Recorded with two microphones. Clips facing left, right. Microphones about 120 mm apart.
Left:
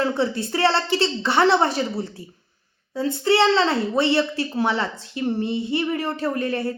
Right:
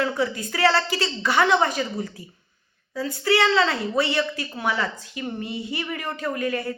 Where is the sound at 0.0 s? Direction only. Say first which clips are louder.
Left 2 dB; 30° left (ahead or behind).